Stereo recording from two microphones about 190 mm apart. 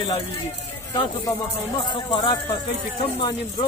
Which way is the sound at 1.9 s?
25° left (ahead or behind).